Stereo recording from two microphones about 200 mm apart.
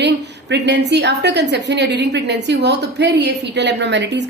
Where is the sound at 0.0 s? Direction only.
60° right (ahead or behind).